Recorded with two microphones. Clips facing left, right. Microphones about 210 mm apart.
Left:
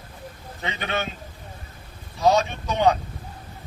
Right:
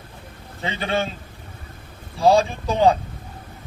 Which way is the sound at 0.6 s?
30° right (ahead or behind).